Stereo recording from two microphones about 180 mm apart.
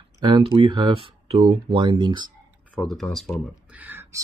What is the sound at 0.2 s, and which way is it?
Speech, 30° right (ahead or behind).